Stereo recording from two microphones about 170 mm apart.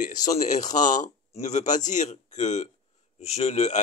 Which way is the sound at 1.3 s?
45° left (ahead or behind).